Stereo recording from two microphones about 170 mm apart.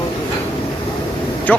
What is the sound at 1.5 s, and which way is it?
Speech, 10° left (ahead or behind).